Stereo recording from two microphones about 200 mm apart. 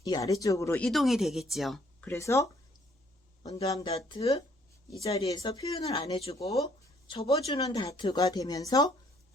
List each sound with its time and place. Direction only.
0.0 s speech: 15° left (ahead or behind)
0.9 s speech: centre (ahead or behind)
2.0 s speech: 15° left (ahead or behind)
3.8 s speech: 30° left (ahead or behind)